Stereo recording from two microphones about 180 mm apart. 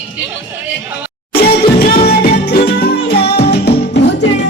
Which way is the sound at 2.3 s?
60° left (ahead or behind).